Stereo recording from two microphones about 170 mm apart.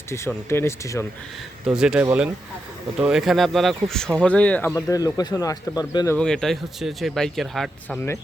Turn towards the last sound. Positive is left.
turn(degrees=0)  # may be behind; listen again after turning